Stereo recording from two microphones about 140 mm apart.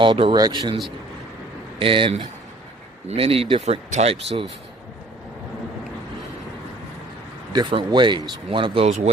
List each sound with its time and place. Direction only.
0.0 s speech: 35° right (ahead or behind)
1.8 s speech: 40° right (ahead or behind)
4.1 s speech: 40° right (ahead or behind)
7.5 s speech: 35° right (ahead or behind)